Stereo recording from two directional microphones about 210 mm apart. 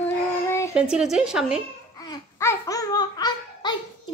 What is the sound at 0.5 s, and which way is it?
Child singing, 15° left (ahead or behind).